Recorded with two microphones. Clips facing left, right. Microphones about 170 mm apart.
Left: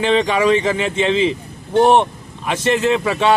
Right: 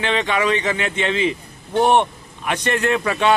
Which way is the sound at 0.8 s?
30° left (ahead or behind).